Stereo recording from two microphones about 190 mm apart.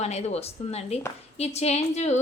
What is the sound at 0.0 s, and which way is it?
A woman's voice, 35° left (ahead or behind).